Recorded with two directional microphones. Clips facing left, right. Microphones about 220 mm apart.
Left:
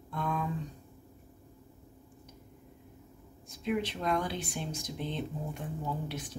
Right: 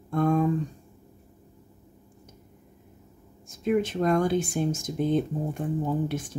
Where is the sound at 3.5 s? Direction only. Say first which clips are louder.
Right 8 dB; 45° right (ahead or behind).